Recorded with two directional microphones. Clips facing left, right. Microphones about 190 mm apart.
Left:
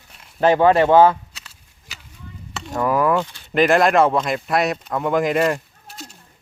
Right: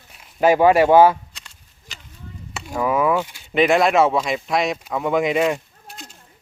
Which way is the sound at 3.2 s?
15° right (ahead or behind).